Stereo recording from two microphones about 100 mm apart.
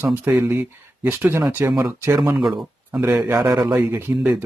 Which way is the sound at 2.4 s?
Centre (ahead or behind).